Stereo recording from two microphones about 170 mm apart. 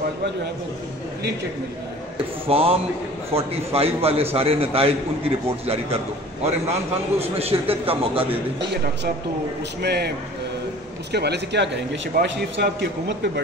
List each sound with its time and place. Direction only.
2.4 s a man's voice: 35° right (ahead or behind)
6.4 s a man's voice: 35° right (ahead or behind)
9.8 s a man's voice: 75° right (ahead or behind)